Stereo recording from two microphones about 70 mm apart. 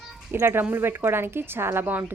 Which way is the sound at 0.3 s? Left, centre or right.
Right.